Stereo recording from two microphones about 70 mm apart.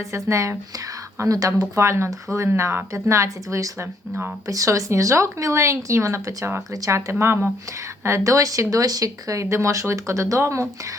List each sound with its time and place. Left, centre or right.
0.1 s speech: right
8.0 s speech: right